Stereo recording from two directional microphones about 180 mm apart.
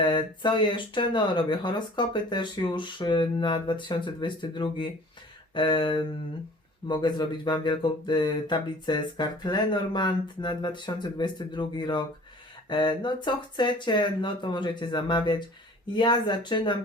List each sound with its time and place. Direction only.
0.0 s speech: 25° left (ahead or behind)